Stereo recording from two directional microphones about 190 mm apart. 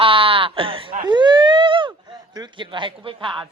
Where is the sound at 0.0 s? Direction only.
30° right (ahead or behind).